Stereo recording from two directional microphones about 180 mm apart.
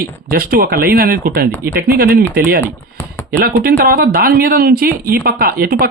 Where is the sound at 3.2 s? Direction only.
55° right (ahead or behind).